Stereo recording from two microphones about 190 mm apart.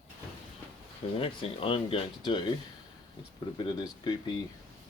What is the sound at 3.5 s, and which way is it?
Speech, 20° left (ahead or behind).